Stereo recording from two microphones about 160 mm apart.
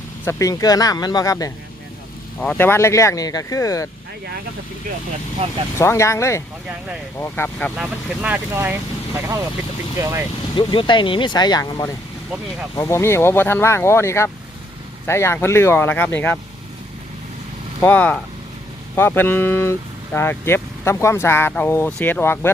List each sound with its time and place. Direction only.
0.3 s speech: 20° left (ahead or behind)
2.4 s speech: 10° left (ahead or behind)
5.4 s speech: 40° right (ahead or behind)
5.7 s speech: 15° left (ahead or behind)
7.8 s speech: 10° right (ahead or behind)
10.5 s speech: 30° left (ahead or behind); by 16.4 s 10° left (ahead or behind)
17.7 s speech: 10° left (ahead or behind)